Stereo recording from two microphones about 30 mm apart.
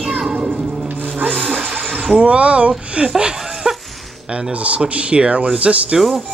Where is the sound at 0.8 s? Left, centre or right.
Right.